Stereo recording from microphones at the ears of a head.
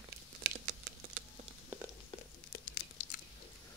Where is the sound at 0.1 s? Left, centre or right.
Right.